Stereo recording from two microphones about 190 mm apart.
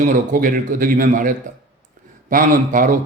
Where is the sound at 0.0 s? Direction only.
45° right (ahead or behind).